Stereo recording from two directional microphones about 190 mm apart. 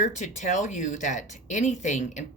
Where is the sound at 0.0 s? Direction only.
40° left (ahead or behind).